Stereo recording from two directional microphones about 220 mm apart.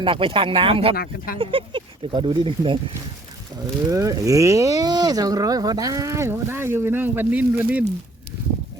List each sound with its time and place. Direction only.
0.0 s speech: 25° right (ahead or behind)
0.9 s speech: 40° left (ahead or behind)
1.4 s speech: 25° right (ahead or behind)
3.8 s speech: 15° right (ahead or behind)